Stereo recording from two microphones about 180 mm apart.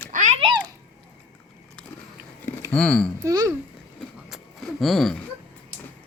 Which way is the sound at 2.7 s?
5° left (ahead or behind).